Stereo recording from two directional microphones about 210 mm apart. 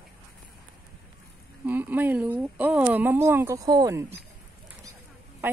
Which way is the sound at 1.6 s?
10° right (ahead or behind).